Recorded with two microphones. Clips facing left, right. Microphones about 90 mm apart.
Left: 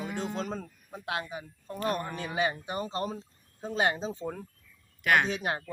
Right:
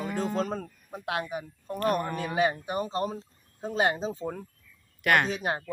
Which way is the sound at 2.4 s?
50° right (ahead or behind).